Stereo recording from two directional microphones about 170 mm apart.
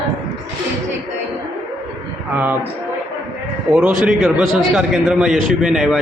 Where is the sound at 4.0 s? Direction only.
5° right (ahead or behind).